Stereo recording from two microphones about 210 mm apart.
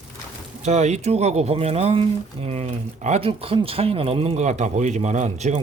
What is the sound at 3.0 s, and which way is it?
A man's voice, 30° right (ahead or behind).